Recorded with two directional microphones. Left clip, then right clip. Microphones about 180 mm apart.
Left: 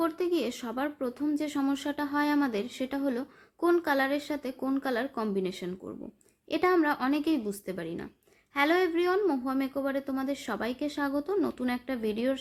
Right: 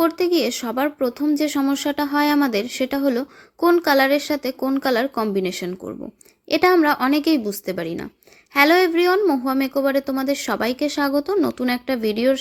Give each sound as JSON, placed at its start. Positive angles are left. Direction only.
{"t": 0.0, "sound": "speech", "side_deg": -30}